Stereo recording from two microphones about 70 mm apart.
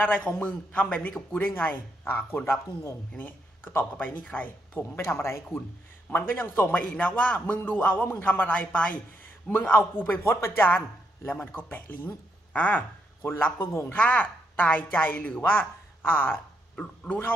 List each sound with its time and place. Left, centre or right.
0.2 s a man's voice: left
2.6 s a man's voice: left
3.2 s a man's voice: left
4.9 s speech: left
6.7 s a man's voice: centre
10.2 s a man's voice: left
13.3 s speech: left
14.0 s a woman's voice: left